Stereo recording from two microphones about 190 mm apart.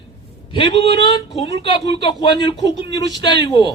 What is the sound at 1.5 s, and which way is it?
Speech, 65° right (ahead or behind).